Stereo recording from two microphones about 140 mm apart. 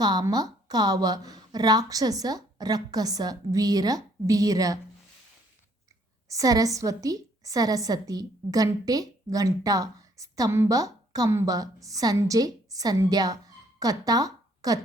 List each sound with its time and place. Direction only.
0.0 s a woman's voice: 30° right (ahead or behind)
6.2 s a woman's voice: 25° right (ahead or behind)